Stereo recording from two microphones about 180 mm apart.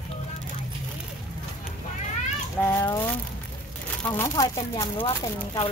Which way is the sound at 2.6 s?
15° left (ahead or behind).